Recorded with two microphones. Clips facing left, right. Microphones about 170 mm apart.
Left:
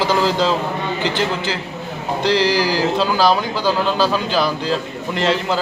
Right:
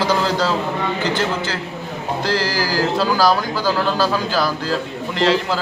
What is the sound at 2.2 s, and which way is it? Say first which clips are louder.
A man's voice: left 6 dB; 20° left (ahead or behind).